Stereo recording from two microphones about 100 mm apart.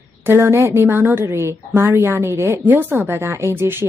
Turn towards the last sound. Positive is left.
turn(degrees=-25)  # may be behind; listen again after turning